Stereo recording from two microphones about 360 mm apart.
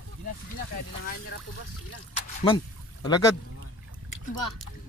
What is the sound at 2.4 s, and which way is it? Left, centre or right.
Speech, centre.